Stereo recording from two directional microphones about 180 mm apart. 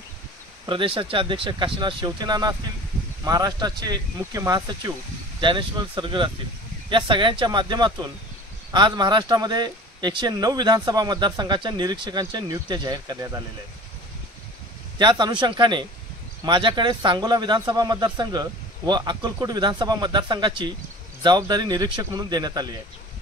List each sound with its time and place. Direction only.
0.7 s speech: 30° right (ahead or behind)
15.0 s speech: 25° right (ahead or behind)